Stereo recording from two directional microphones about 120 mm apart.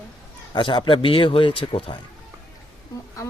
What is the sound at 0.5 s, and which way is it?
Speech, 40° left (ahead or behind).